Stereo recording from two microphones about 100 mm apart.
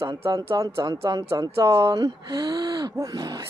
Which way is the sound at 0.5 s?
40° right (ahead or behind).